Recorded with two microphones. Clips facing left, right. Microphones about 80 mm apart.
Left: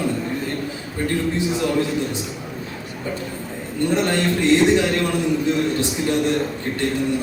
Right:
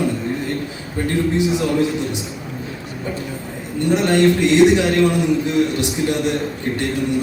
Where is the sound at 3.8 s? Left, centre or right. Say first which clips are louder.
Right 5 dB; centre.